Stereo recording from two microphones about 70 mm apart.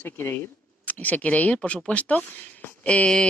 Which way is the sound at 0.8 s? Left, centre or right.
Left.